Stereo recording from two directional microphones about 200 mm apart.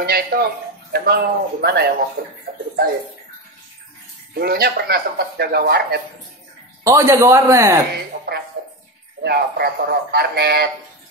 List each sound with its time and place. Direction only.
0.0 s speech: 50° right (ahead or behind)
4.3 s speech: 50° right (ahead or behind)
6.8 s a man's voice: 15° right (ahead or behind)
9.2 s speech: 55° right (ahead or behind)